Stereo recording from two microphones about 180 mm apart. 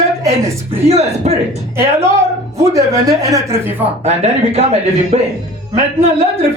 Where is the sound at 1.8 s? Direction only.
15° right (ahead or behind).